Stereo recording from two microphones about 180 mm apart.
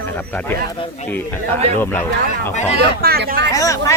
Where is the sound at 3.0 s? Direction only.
60° right (ahead or behind).